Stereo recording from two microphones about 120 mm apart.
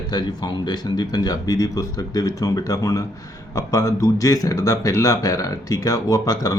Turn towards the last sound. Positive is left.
turn(degrees=30)  # may be behind; listen again after turning